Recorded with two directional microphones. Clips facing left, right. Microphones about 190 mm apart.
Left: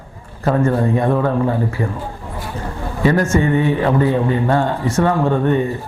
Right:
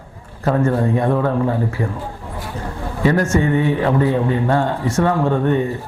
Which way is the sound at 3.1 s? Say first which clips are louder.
Left 1 dB; 20° left (ahead or behind).